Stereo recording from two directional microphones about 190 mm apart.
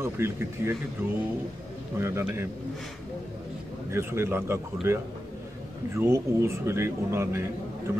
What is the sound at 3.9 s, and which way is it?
Speech, 15° right (ahead or behind).